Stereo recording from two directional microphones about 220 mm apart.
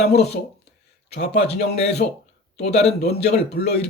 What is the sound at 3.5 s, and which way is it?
Speech, 50° left (ahead or behind).